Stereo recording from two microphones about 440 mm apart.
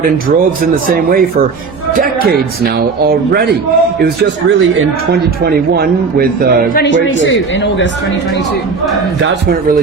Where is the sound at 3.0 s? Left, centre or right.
Right.